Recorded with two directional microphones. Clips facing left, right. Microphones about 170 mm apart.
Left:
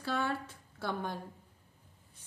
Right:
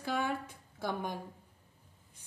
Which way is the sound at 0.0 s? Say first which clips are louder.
Even; 15° right (ahead or behind).